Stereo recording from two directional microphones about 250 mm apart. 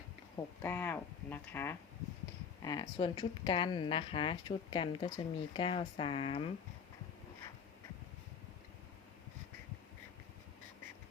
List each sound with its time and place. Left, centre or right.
0.3 s speech: centre